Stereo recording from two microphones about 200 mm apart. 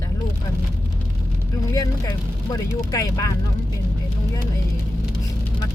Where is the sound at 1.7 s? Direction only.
20° left (ahead or behind).